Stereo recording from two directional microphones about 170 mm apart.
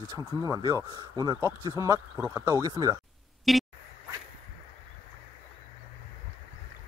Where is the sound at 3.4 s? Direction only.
Centre (ahead or behind).